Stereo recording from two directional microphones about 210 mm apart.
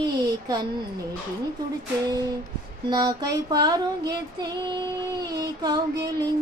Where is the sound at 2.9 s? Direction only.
20° right (ahead or behind).